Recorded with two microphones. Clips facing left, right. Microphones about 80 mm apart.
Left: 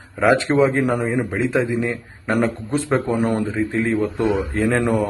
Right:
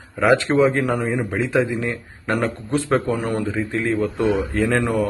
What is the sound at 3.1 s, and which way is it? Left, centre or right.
Speech, left.